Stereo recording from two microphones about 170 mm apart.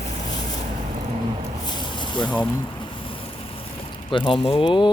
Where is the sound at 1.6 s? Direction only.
25° left (ahead or behind).